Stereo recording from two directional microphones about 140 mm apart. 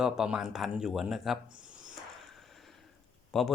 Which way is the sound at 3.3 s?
Centre (ahead or behind).